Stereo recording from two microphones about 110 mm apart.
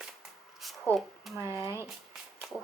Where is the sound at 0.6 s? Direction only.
Centre (ahead or behind).